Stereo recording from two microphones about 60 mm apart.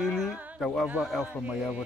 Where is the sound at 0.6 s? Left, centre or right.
Centre.